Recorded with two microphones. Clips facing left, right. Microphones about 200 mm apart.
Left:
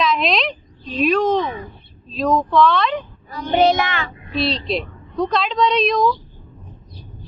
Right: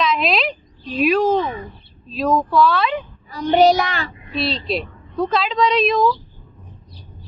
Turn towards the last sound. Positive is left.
turn(degrees=0)  # may be behind; listen again after turning